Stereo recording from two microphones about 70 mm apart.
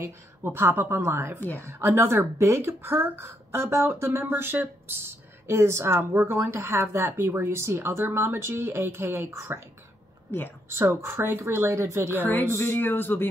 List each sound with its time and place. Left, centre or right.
0.0 s speech: right
10.3 s speech: left
10.7 s speech: right
12.5 s speech: left